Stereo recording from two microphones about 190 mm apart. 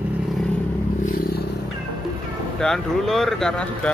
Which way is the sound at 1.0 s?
50° left (ahead or behind).